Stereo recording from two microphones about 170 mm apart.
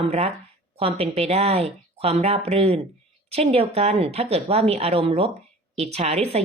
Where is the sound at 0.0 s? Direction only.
35° right (ahead or behind).